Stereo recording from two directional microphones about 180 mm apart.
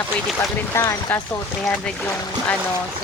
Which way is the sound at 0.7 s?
15° left (ahead or behind).